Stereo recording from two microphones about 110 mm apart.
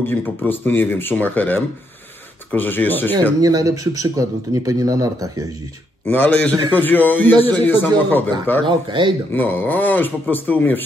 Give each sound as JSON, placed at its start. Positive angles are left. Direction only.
{"t": 0.0, "sound": "speech", "side_deg": 20}
{"t": 3.3, "sound": "a man's voice", "side_deg": -35}
{"t": 6.0, "sound": "speech", "side_deg": 15}
{"t": 8.6, "sound": "speech", "side_deg": -45}
{"t": 9.3, "sound": "speech", "side_deg": 20}